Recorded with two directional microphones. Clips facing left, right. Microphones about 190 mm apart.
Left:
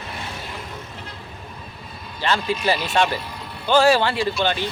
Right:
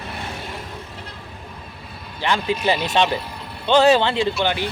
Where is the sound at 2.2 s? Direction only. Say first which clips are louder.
Right 1 dB; 15° right (ahead or behind).